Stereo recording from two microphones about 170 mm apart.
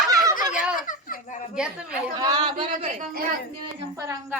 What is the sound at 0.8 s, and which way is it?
Speech, 50° left (ahead or behind).